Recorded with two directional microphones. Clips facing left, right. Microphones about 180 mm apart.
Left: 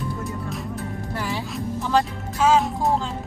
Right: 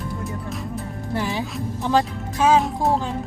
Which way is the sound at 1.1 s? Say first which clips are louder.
Right 4 dB; 20° right (ahead or behind).